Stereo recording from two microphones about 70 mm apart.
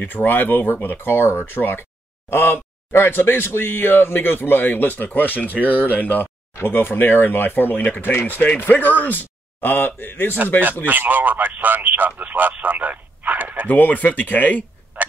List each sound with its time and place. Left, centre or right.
0.0 s speech: left
6.5 s speech: left
10.9 s speech: right
13.7 s speech: left
15.0 s tick-tock: right